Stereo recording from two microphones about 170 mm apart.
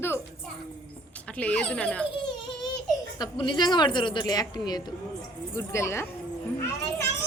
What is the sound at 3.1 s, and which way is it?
A woman's voice, 25° left (ahead or behind).